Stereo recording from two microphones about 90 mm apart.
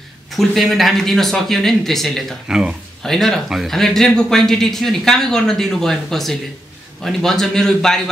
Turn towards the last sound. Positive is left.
turn(degrees=5)  # may be behind; listen again after turning